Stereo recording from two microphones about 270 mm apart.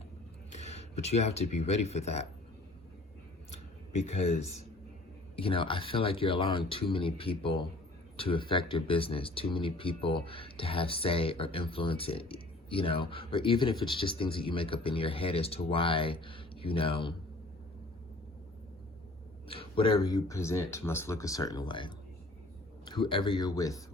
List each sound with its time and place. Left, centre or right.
0.5 s a sound: left
1.5 s speech: left
3.5 s speech: left
19.5 s speech: centre